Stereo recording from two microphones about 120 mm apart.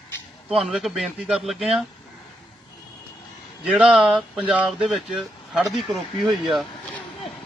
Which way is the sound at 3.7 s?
10° right (ahead or behind).